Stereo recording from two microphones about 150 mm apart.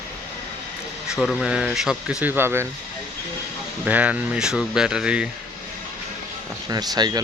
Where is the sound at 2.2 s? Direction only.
15° right (ahead or behind).